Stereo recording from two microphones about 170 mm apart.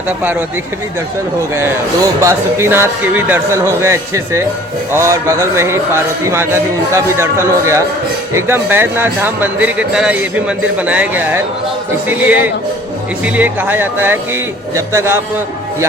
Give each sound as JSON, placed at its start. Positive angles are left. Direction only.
{"t": 2.2, "sound": "speech", "side_deg": -15}